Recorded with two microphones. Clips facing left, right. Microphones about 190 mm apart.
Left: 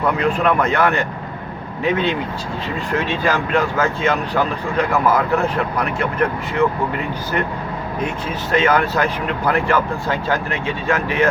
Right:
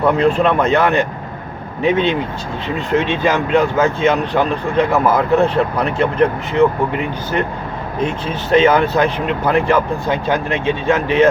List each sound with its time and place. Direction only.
0.0 s speech: 25° right (ahead or behind)
8.0 s speech: 25° right (ahead or behind)